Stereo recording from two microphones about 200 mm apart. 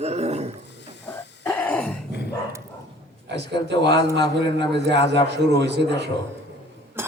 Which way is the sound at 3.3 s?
60° right (ahead or behind).